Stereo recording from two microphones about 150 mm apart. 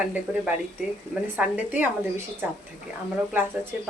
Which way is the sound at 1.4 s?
10° right (ahead or behind).